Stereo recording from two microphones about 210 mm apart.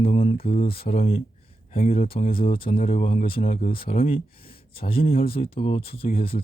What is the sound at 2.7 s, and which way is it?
Speech, 40° left (ahead or behind).